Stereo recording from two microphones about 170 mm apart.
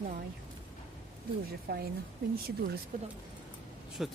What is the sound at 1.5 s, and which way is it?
Speech, 65° right (ahead or behind).